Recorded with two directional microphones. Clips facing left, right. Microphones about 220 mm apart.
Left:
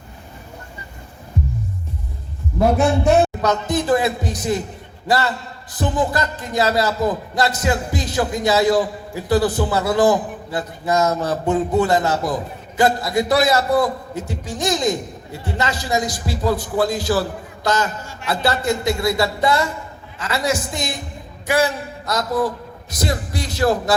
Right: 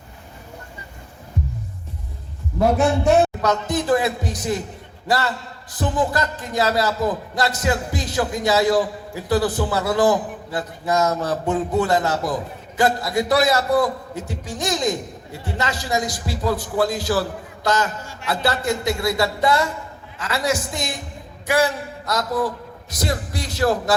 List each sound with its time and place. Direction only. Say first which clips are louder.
2.6 s a man's voice: left 1 dB; 5° left (ahead or behind)
3.4 s a man's voice: left 2 dB; 25° left (ahead or behind)